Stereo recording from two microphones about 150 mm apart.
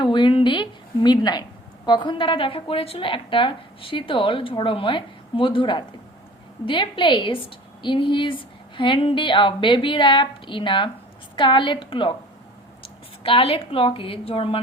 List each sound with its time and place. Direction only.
0.0 s a woman's voice: 35° left (ahead or behind)
13.2 s a woman's voice: 40° left (ahead or behind)